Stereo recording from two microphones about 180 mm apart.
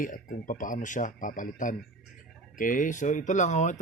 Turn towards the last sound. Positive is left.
turn(degrees=40)  # may be behind; listen again after turning